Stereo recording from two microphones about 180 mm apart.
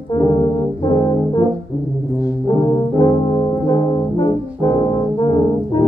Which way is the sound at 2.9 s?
25° left (ahead or behind).